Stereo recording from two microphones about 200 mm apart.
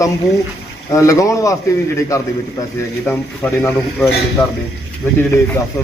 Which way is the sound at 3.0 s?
10° left (ahead or behind).